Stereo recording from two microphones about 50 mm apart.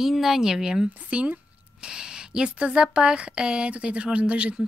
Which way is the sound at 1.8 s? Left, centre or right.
Centre.